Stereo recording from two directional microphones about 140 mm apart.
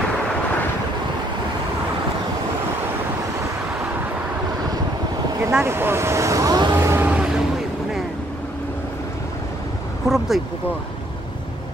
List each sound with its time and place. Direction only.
5.4 s vehicle: 20° right (ahead or behind)
7.1 s vehicle: 5° right (ahead or behind)
10.0 s a sound: centre (ahead or behind)